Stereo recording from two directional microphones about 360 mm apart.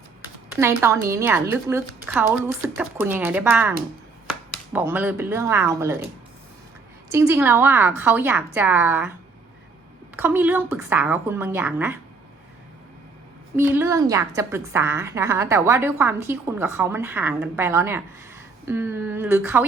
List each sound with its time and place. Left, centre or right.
0.5 s a woman's voice: centre
7.1 s a woman's voice: centre
10.2 s a woman's voice: centre
13.6 s a woman's voice: centre